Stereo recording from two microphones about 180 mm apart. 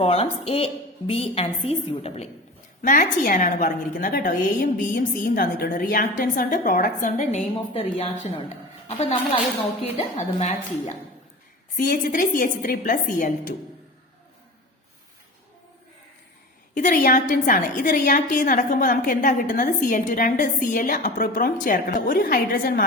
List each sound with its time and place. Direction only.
0.0 s a woman's voice: 35° left (ahead or behind)
2.8 s a woman's voice: 45° left (ahead or behind)
16.7 s a woman's voice: 45° left (ahead or behind)